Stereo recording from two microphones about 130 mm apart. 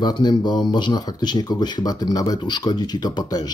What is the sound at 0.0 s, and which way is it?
Speech, 35° left (ahead or behind).